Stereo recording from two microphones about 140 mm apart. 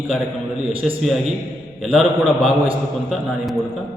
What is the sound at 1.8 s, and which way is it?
Speech, 5° right (ahead or behind).